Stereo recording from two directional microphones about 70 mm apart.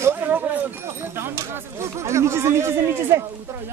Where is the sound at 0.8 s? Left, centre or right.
Right.